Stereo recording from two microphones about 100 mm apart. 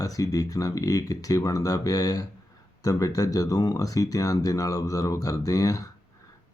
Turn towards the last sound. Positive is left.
turn(degrees=35)  # may be behind; listen again after turning